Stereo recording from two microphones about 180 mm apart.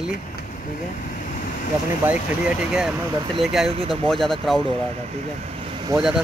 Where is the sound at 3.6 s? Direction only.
30° right (ahead or behind).